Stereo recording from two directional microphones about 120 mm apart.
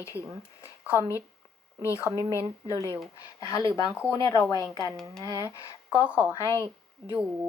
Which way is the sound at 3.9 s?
10° right (ahead or behind).